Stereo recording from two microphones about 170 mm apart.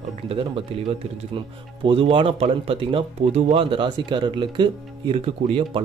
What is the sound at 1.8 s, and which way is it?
Speech, 30° right (ahead or behind).